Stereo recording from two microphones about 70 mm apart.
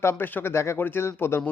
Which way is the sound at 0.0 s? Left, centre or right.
Left.